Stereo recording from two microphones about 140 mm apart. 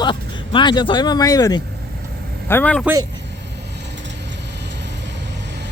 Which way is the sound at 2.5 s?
10° left (ahead or behind).